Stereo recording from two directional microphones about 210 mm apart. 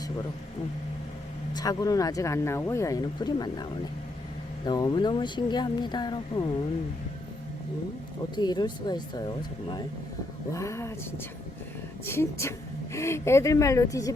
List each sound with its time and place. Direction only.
1.5 s speech: 15° left (ahead or behind)
8.4 s speech: 20° left (ahead or behind)